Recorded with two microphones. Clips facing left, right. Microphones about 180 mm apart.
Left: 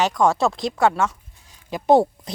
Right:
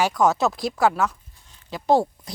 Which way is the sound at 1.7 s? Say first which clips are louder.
Left 4 dB; 20° left (ahead or behind).